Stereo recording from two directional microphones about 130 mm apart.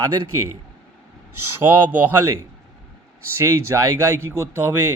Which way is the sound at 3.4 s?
20° right (ahead or behind).